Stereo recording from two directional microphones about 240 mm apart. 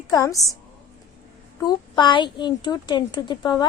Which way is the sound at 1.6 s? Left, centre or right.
Centre.